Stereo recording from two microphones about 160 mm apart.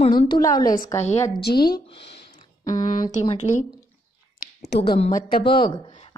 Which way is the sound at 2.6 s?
25° left (ahead or behind).